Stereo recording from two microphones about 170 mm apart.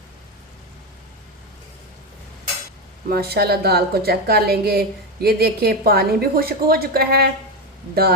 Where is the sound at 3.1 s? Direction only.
65° right (ahead or behind).